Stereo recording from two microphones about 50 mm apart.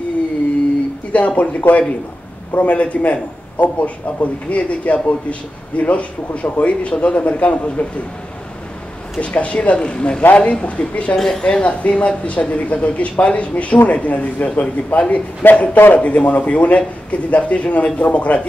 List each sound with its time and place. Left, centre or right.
1.1 s a man's voice: left
9.2 s a man's voice: left
11.1 s a woman's voice: centre
11.4 s a man's voice: left